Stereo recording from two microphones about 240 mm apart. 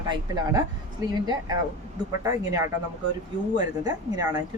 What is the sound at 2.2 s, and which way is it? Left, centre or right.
Speech, centre.